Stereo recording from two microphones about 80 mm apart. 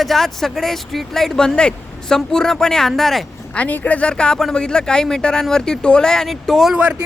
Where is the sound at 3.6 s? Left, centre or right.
Centre.